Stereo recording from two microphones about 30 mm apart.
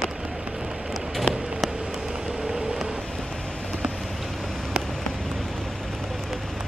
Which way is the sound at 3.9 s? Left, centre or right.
Centre.